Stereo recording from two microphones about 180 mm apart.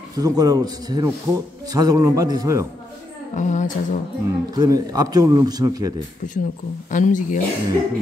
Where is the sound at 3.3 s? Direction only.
45° left (ahead or behind).